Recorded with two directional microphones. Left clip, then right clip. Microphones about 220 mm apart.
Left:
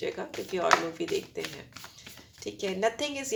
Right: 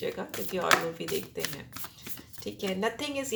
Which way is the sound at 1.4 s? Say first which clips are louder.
Right 2 dB; 10° right (ahead or behind).